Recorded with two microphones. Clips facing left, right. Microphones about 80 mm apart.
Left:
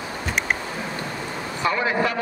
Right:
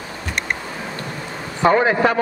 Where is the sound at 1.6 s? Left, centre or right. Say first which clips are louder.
Right 7 dB; right.